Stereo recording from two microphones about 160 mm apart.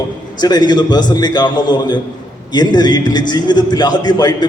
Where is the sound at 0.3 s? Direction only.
25° left (ahead or behind).